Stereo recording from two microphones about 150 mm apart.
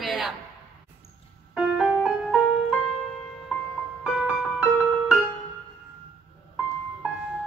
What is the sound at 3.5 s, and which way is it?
Music, centre (ahead or behind).